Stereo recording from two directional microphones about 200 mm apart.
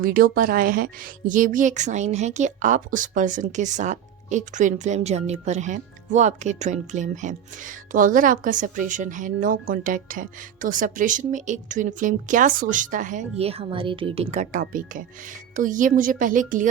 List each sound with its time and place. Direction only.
0.0 s speech: 45° right (ahead or behind)